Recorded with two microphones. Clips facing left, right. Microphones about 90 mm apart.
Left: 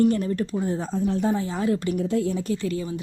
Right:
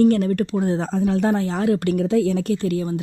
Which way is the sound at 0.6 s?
80° right.